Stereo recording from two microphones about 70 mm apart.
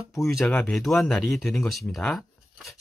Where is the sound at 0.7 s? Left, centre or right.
Centre.